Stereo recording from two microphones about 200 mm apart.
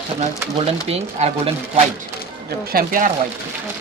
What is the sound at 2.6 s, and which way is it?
Speech, 45° right (ahead or behind).